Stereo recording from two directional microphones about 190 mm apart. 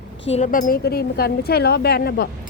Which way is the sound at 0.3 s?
40° left (ahead or behind).